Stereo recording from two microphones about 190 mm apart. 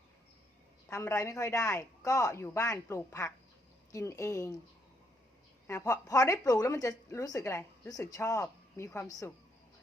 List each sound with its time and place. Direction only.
0.9 s a woman's voice: 15° left (ahead or behind)
5.6 s a woman's voice: 15° left (ahead or behind)